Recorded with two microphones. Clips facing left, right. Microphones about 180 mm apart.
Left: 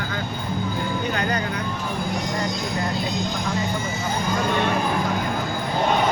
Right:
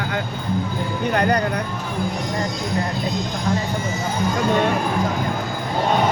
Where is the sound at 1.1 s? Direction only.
60° right (ahead or behind).